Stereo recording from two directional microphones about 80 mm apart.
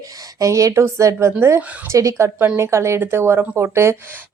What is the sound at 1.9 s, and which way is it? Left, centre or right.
Speech, right.